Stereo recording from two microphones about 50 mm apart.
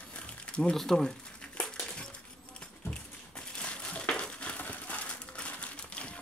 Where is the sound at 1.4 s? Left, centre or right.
Left.